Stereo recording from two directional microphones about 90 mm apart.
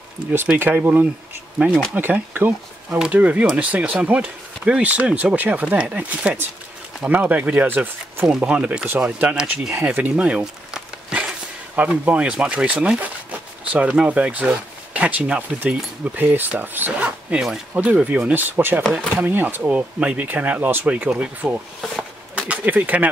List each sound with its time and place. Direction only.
0.6 s speech: 15° right (ahead or behind)
18.8 s speech: 5° left (ahead or behind)
19.1 s speech: 20° right (ahead or behind)